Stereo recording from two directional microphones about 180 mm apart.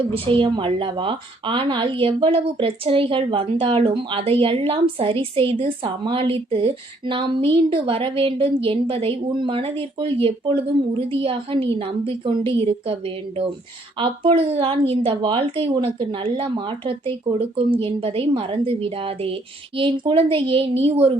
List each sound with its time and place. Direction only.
0.1 s a woman's voice: 30° right (ahead or behind)
14.0 s a woman's voice: 30° right (ahead or behind)